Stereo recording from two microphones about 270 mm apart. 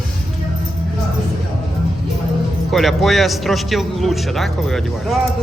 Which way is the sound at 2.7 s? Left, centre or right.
Centre.